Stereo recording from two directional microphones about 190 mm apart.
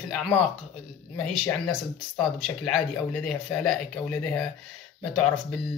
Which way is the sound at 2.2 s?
Centre (ahead or behind).